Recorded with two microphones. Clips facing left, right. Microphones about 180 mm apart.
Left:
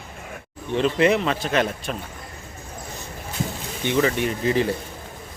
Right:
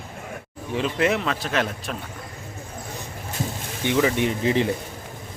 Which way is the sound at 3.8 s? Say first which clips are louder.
Even; 15° right (ahead or behind).